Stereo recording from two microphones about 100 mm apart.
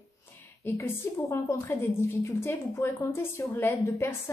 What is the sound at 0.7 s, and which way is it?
A woman's voice, 25° left (ahead or behind).